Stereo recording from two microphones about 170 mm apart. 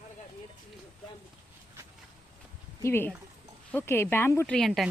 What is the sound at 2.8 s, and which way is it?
Speech, 15° left (ahead or behind).